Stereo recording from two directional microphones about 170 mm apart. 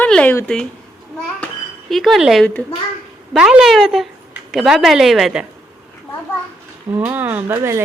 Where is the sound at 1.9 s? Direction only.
Centre (ahead or behind).